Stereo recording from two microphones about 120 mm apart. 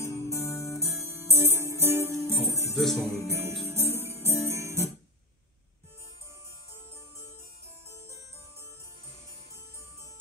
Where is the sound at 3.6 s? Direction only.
20° right (ahead or behind).